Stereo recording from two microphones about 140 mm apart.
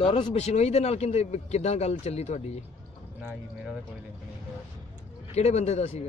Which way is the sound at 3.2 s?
5° right (ahead or behind).